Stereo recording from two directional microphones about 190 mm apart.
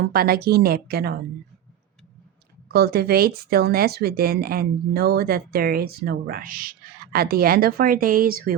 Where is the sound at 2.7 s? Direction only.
55° right (ahead or behind).